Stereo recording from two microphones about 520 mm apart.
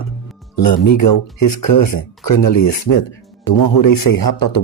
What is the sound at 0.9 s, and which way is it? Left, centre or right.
Speech, left.